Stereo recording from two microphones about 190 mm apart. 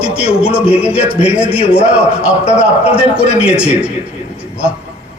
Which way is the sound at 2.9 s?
5° right (ahead or behind).